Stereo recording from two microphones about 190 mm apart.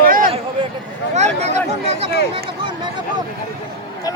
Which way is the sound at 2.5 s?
25° right (ahead or behind).